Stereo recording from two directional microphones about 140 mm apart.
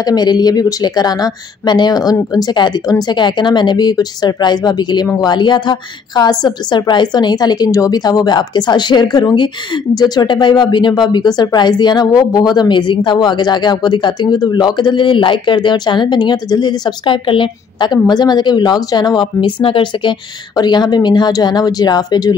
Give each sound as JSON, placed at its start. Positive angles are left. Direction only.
{"t": 0.0, "sound": "a woman's voice", "side_deg": 30}